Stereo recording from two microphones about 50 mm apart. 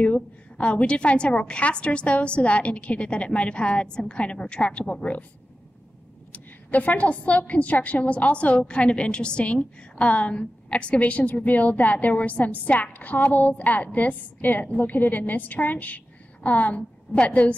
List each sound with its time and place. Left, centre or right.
0.0 s a woman's voice: left
6.3 s a woman's voice: left